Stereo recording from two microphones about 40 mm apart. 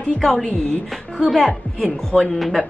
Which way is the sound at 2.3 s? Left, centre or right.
Centre.